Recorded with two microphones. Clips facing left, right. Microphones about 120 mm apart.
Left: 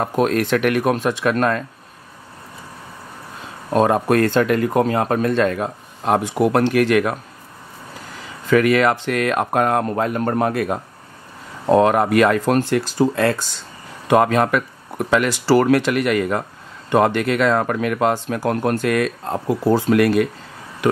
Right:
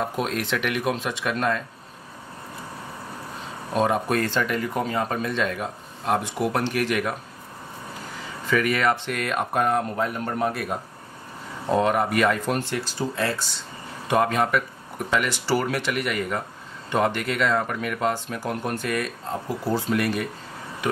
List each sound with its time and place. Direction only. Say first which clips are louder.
0.0 s speech: left 8 dB; 50° left (ahead or behind)
3.7 s speech: left 7 dB; 50° left (ahead or behind)
6.0 s speech: left 7 dB; 90° left
8.5 s speech: left 7 dB; 80° left; by 10.8 s 60° left (ahead or behind)
11.7 s speech: left 7 dB; 85° left
12.7 s speech: left 9 dB; 60° left (ahead or behind)
14.0 s speech: left 6 dB; 75° left (ahead or behind)
17.0 s speech: left 5 dB; 90° left